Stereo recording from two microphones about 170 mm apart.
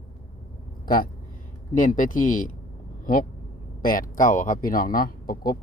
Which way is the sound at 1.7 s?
50° left (ahead or behind).